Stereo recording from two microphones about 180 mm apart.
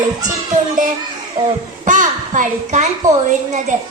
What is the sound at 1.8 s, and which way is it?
A child's voice, 45° right (ahead or behind).